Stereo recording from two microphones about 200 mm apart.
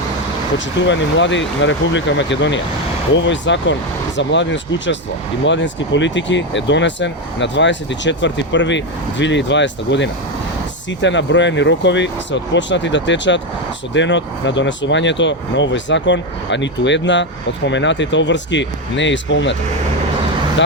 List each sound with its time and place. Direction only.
0.8 s speech: 65° left (ahead or behind)